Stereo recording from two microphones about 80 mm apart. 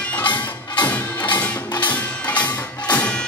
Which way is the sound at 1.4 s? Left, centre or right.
Centre.